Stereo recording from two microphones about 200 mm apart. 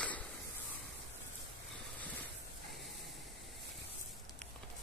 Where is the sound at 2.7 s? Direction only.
Centre (ahead or behind).